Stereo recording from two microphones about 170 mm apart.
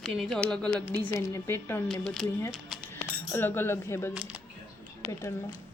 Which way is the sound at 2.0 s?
Centre (ahead or behind).